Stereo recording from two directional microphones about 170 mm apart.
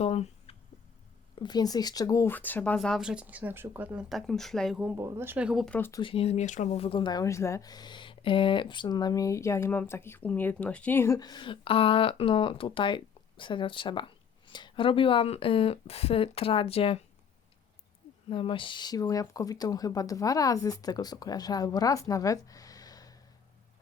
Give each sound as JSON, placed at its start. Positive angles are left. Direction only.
{"t": 0.0, "sound": "a sound", "side_deg": 35}
{"t": 1.4, "sound": "speech", "side_deg": 25}
{"t": 4.8, "sound": "speech", "side_deg": -10}
{"t": 5.6, "sound": "speech", "side_deg": 10}
{"t": 5.9, "sound": "speech", "side_deg": 30}
{"t": 18.3, "sound": "speech", "side_deg": 30}